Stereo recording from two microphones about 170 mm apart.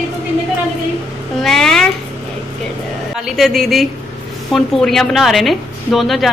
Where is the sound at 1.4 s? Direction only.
Centre (ahead or behind).